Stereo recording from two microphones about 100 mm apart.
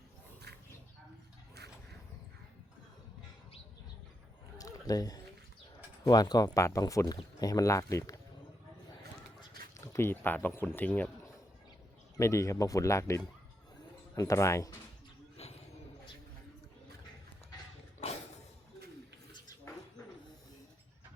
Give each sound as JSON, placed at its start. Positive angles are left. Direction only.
{"t": 4.5, "sound": "a sound", "side_deg": 40}
{"t": 6.1, "sound": "speech", "side_deg": 40}
{"t": 9.7, "sound": "speech", "side_deg": 30}
{"t": 12.1, "sound": "speech", "side_deg": 30}
{"t": 15.4, "sound": "a sound", "side_deg": 90}
{"t": 18.0, "sound": "music", "side_deg": 90}